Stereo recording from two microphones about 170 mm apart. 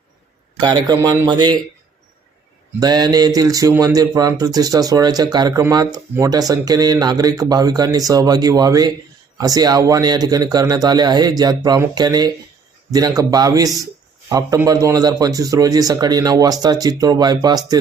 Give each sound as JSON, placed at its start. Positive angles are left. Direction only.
{"t": 0.6, "sound": "speech", "side_deg": -25}
{"t": 2.8, "sound": "speech", "side_deg": -25}